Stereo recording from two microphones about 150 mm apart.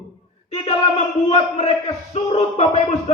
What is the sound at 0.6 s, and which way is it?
Speech, 50° left (ahead or behind).